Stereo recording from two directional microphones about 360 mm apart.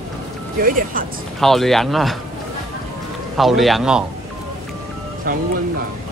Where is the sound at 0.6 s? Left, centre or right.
Right.